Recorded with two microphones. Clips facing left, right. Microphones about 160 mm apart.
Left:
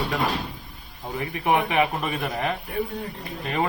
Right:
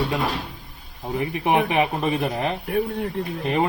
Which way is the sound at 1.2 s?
25° right (ahead or behind).